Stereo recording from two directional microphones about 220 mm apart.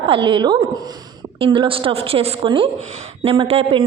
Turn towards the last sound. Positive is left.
turn(degrees=-25)  # may be behind; listen again after turning